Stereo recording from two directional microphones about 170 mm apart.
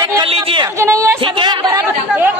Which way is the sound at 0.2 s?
30° right (ahead or behind).